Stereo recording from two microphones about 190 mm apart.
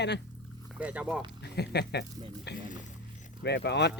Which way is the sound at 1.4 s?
60° left (ahead or behind).